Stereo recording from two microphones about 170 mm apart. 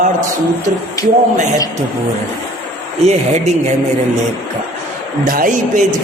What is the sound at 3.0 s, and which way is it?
Speech, 40° right (ahead or behind).